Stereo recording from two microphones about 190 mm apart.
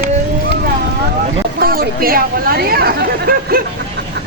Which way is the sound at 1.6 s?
50° right (ahead or behind).